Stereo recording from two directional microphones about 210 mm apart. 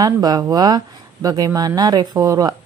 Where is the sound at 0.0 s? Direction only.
20° right (ahead or behind).